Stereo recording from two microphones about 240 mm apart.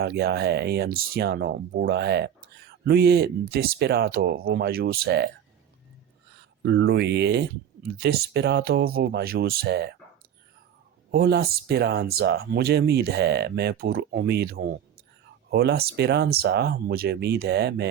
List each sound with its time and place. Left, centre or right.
0.0 s speech: right
6.6 s speech: right
11.1 s speech: right